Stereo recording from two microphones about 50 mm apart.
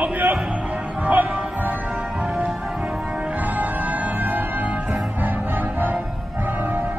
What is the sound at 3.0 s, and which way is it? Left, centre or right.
Music, right.